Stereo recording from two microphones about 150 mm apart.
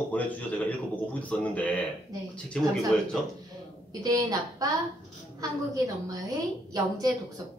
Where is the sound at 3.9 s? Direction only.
25° right (ahead or behind).